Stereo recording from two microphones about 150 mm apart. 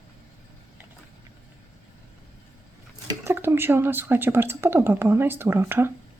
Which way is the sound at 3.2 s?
15° right (ahead or behind).